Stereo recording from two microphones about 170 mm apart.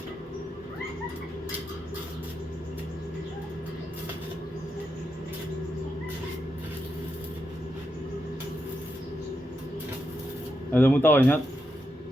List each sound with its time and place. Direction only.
10.7 s speech: 10° left (ahead or behind)